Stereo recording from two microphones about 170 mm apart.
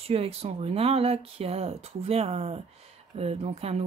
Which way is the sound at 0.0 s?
35° right (ahead or behind).